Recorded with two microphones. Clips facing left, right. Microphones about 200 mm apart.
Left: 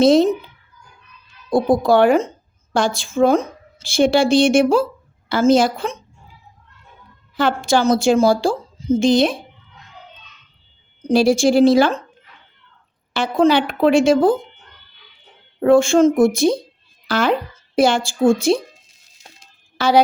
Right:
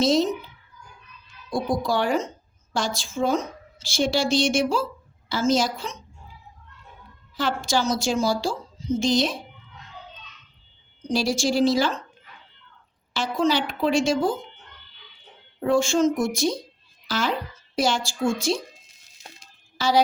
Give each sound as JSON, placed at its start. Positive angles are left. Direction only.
{"t": 0.0, "sound": "a woman's voice", "side_deg": 55}
{"t": 1.5, "sound": "a woman's voice", "side_deg": 55}
{"t": 7.3, "sound": "a woman's voice", "side_deg": 60}
{"t": 11.1, "sound": "a woman's voice", "side_deg": 55}
{"t": 13.1, "sound": "a woman's voice", "side_deg": 60}
{"t": 15.6, "sound": "a woman's voice", "side_deg": 55}
{"t": 19.8, "sound": "a woman's voice", "side_deg": 60}